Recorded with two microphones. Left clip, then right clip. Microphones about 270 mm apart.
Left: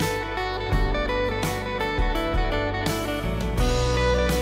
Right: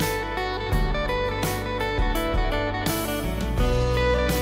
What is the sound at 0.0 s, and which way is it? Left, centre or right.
Music, centre.